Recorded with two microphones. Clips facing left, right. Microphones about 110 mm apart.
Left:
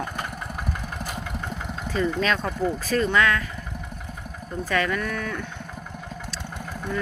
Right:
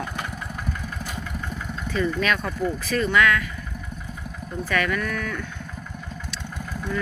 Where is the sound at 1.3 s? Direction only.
20° left (ahead or behind).